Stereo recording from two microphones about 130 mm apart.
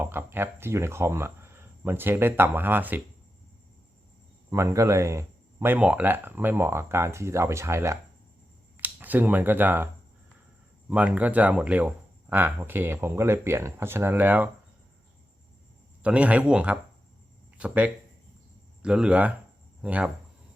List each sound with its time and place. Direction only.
0.0 s speech: 15° right (ahead or behind)
4.4 s speech: 20° right (ahead or behind)
16.0 s speech: 10° right (ahead or behind)